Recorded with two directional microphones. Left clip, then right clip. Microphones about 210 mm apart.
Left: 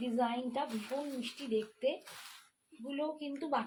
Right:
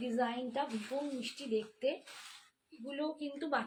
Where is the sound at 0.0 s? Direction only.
15° right (ahead or behind).